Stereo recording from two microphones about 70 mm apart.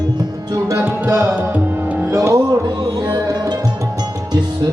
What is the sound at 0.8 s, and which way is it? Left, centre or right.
Music, right.